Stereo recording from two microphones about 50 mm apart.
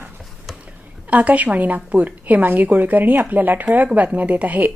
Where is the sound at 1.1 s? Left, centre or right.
Right.